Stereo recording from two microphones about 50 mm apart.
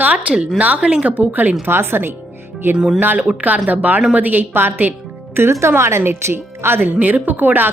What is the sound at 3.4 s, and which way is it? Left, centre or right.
A woman's voice, right.